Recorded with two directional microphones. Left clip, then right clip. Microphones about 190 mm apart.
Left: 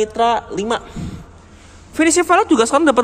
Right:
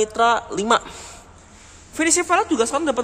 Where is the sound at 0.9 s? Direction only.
30° right (ahead or behind).